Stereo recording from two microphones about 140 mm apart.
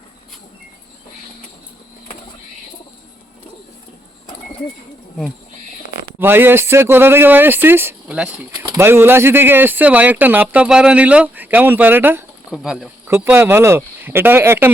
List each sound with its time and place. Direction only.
6.1 s speech: 15° right (ahead or behind)
13.1 s speech: 15° right (ahead or behind)